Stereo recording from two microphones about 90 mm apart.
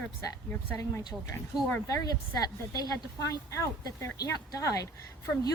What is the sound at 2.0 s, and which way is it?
A woman's voice, 45° left (ahead or behind).